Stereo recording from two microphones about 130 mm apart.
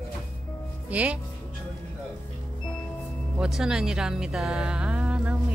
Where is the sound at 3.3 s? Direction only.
5° right (ahead or behind).